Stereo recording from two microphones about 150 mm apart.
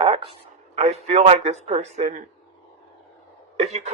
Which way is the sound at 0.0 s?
40° right (ahead or behind).